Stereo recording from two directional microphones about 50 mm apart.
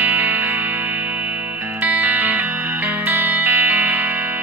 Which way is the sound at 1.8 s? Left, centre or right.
Right.